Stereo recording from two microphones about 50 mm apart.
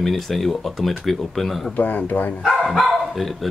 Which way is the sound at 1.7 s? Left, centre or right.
Left.